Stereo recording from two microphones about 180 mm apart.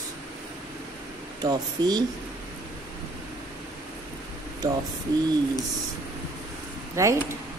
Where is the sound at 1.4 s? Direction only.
25° right (ahead or behind).